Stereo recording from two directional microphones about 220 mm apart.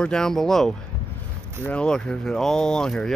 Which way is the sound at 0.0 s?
5° left (ahead or behind).